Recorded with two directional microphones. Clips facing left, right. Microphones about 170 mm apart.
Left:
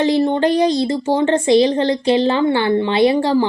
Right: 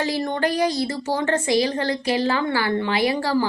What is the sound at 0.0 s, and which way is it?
A woman's voice, 30° left (ahead or behind).